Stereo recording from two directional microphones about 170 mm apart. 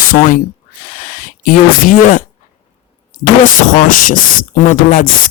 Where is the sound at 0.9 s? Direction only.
50° left (ahead or behind).